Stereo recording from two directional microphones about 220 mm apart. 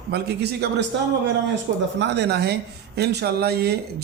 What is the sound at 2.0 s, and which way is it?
A man's voice, 50° right (ahead or behind).